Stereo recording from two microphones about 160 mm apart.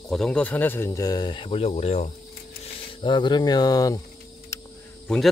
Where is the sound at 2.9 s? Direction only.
30° left (ahead or behind).